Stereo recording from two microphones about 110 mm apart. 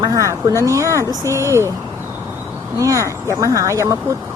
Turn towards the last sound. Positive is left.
turn(degrees=-30)  # may be behind; listen again after turning